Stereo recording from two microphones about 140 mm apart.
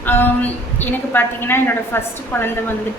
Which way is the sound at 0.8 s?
15° left (ahead or behind).